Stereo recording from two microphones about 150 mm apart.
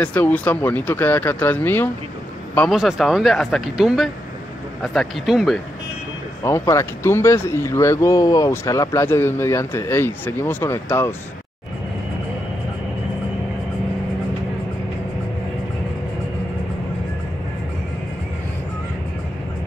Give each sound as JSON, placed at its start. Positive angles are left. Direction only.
{"t": 0.0, "sound": "speech", "side_deg": 10}
{"t": 2.7, "sound": "speech", "side_deg": 0}
{"t": 6.4, "sound": "speech", "side_deg": 20}